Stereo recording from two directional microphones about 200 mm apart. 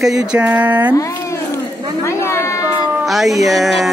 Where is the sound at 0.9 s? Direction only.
15° left (ahead or behind).